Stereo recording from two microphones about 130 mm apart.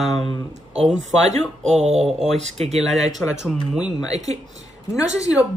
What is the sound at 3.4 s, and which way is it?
A woman's voice, 5° right (ahead or behind).